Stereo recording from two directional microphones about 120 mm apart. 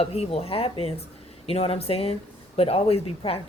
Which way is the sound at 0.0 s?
55° left (ahead or behind).